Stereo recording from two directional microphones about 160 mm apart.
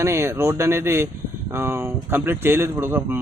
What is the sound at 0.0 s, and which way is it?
A man's voice, 15° right (ahead or behind).